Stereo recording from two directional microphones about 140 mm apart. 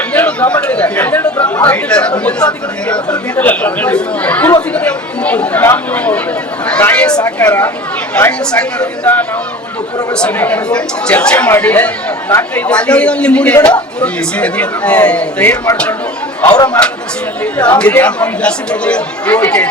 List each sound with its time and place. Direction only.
0.1 s chatter: 10° left (ahead or behind)
2.8 s speech: 10° left (ahead or behind)
4.7 s chatter: 10° left (ahead or behind)
5.6 s speech: 10° left (ahead or behind)
6.7 s chatter: 10° left (ahead or behind)
7.4 s speech: 10° left (ahead or behind)
16.5 s speech: 25° left (ahead or behind)
17.4 s speech: 10° left (ahead or behind)